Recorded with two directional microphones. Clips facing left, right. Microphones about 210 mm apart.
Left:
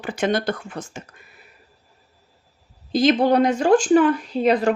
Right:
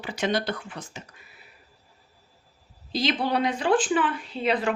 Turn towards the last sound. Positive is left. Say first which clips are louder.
# left 7 dB
turn(degrees=40)  # may be behind; listen again after turning